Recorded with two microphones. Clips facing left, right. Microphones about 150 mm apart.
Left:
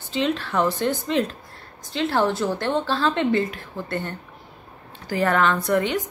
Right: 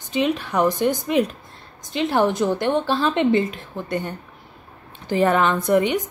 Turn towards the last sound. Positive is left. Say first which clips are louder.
# right 3 dB
turn(degrees=-20)  # may be behind; listen again after turning